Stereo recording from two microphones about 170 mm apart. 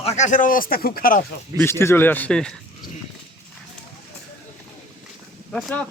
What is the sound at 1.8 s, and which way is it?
Speech, 15° left (ahead or behind).